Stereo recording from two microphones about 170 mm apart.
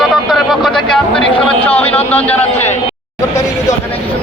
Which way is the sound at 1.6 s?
35° left (ahead or behind).